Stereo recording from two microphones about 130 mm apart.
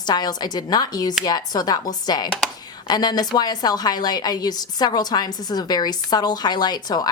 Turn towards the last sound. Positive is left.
turn(degrees=30)  # may be behind; listen again after turning